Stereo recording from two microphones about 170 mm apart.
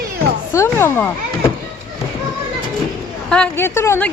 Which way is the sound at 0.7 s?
15° left (ahead or behind).